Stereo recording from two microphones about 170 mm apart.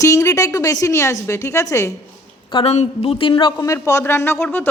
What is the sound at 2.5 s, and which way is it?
A woman's voice, 35° left (ahead or behind).